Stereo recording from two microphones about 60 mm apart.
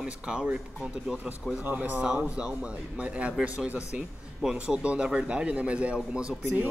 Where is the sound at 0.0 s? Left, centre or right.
Centre.